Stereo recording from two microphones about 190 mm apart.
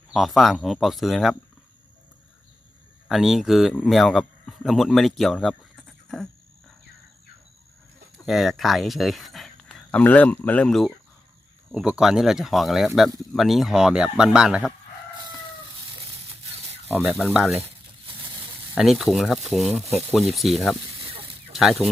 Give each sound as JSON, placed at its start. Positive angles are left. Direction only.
{"t": 0.1, "sound": "speech", "side_deg": 0}
{"t": 3.1, "sound": "speech", "side_deg": 0}
{"t": 8.3, "sound": "speech", "side_deg": 0}
{"t": 16.9, "sound": "speech", "side_deg": -5}
{"t": 18.0, "sound": "vehicle", "side_deg": -25}
{"t": 18.7, "sound": "speech", "side_deg": 0}